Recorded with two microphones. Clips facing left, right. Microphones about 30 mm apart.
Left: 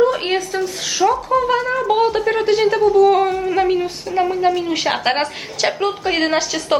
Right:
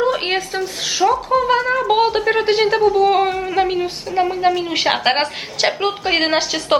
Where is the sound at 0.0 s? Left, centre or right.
Centre.